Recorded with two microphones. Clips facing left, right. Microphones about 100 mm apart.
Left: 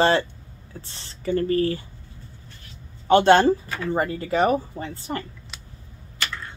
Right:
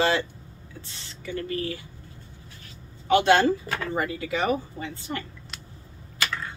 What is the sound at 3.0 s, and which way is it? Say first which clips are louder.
Speech: left 4 dB; 35° left (ahead or behind).